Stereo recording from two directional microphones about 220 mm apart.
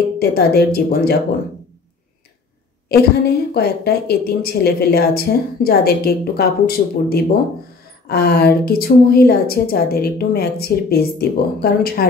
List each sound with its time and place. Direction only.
0.2 s a woman's voice: 45° left (ahead or behind)
2.9 s a woman's voice: 45° left (ahead or behind)